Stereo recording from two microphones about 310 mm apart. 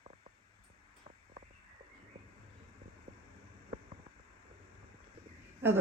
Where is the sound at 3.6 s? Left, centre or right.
Centre.